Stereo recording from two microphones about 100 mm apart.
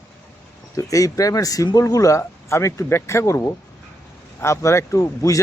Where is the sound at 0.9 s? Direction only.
35° left (ahead or behind).